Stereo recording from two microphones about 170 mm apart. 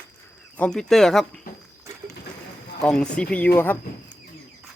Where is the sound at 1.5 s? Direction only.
60° left (ahead or behind).